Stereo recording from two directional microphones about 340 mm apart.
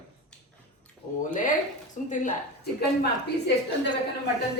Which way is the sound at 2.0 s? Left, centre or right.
Left.